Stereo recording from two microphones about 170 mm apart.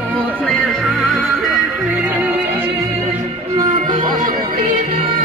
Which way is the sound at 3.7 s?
50° right (ahead or behind).